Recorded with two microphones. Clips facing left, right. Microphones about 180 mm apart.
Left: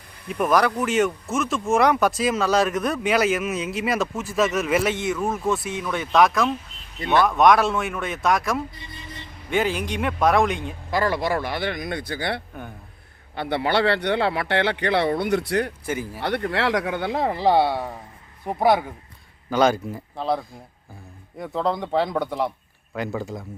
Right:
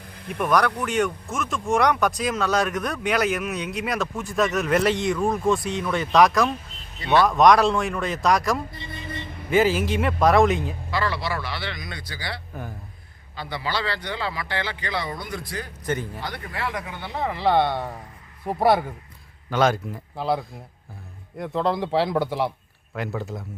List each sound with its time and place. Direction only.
0.3 s speech: centre (ahead or behind)
10.9 s speech: 45° left (ahead or behind); by 15.7 s 65° left (ahead or behind)
15.9 s speech: 10° left (ahead or behind)
16.2 s speech: 65° left (ahead or behind); by 17.2 s 90° left
17.4 s speech: 10° left (ahead or behind)